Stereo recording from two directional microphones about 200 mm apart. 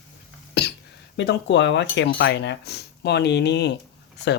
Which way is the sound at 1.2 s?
60° left (ahead or behind).